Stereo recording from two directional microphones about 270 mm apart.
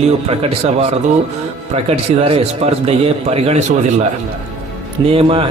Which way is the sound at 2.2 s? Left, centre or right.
Right.